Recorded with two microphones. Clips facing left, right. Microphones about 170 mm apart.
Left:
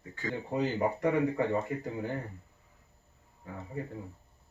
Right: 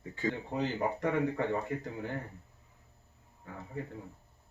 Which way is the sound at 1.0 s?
10° left (ahead or behind).